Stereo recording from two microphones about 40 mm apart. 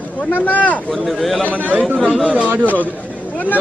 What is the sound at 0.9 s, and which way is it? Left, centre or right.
Speech, centre.